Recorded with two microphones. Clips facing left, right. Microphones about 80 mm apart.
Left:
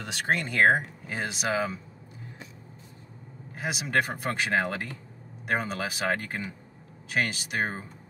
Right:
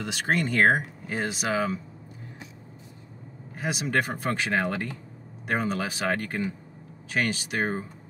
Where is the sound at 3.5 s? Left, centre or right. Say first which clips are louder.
Right 1 dB; centre.